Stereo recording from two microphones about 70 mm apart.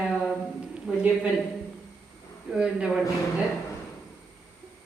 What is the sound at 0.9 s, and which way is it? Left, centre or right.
Speech, centre.